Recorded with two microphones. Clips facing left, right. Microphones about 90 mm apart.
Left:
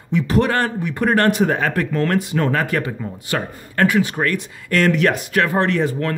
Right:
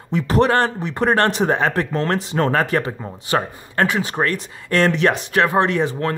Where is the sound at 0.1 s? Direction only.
35° right (ahead or behind).